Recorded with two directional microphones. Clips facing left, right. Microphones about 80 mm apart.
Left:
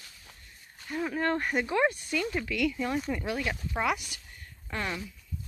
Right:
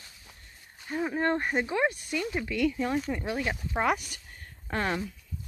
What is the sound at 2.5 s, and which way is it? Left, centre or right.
Speech, right.